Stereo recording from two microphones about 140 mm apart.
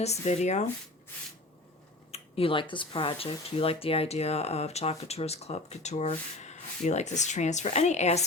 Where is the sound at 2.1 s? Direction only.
40° left (ahead or behind).